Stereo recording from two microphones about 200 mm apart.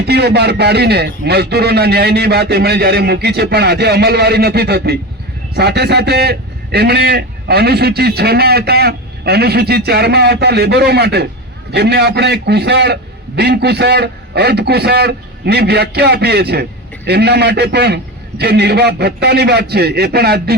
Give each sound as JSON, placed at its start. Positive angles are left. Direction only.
{"t": 0.1, "sound": "a man's voice", "side_deg": -55}